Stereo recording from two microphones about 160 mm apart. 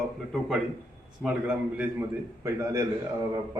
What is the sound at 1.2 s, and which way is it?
Speech, 5° right (ahead or behind).